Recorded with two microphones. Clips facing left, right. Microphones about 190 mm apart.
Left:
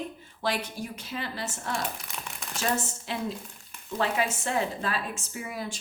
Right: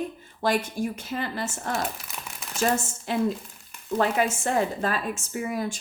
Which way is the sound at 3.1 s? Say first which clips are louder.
Right 8 dB; 50° right (ahead or behind).